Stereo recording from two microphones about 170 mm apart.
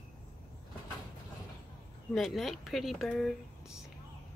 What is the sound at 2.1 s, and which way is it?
Speech, centre (ahead or behind).